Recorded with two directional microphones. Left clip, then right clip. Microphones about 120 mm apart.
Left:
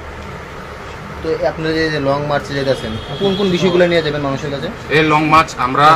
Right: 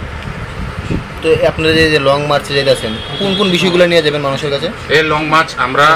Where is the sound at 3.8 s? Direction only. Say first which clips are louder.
Right 6 dB; 50° right (ahead or behind).